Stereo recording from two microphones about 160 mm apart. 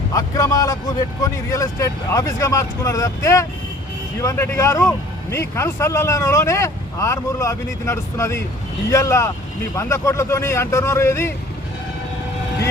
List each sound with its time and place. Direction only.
0.1 s a man's voice: 20° left (ahead or behind)